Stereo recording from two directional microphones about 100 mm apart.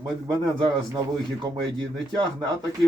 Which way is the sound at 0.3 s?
50° right (ahead or behind).